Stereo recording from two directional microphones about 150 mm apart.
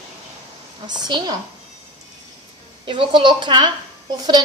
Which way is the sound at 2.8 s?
30° right (ahead or behind).